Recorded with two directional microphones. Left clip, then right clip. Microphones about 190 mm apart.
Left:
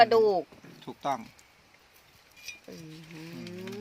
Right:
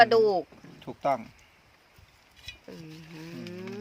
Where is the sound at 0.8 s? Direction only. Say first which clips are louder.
Right 4 dB; 45° right (ahead or behind).